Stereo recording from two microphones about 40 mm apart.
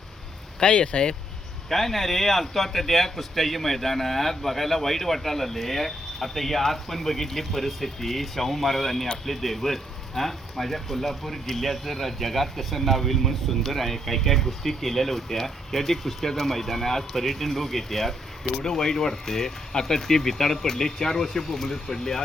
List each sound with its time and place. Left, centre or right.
0.6 s speech: left
1.7 s speech: centre